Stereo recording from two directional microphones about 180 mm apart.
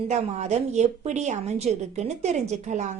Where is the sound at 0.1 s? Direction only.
40° right (ahead or behind).